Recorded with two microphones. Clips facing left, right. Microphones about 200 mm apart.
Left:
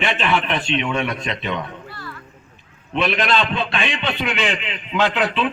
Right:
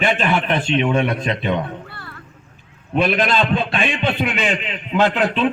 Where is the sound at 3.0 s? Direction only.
50° right (ahead or behind).